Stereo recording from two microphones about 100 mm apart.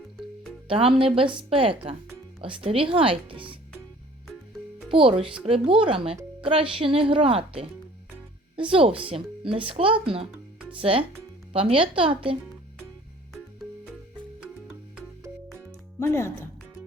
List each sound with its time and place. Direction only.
0.7 s speech: 70° right (ahead or behind)
4.9 s speech: 65° right (ahead or behind)
5.4 s speech: 80° right; by 12.4 s 65° right (ahead or behind)
16.0 s speech: 25° left (ahead or behind)